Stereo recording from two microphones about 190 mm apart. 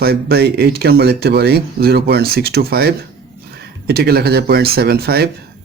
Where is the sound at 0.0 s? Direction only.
55° right (ahead or behind).